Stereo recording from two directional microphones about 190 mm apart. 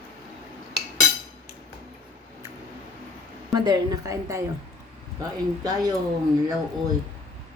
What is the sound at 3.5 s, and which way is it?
Speech, 20° right (ahead or behind).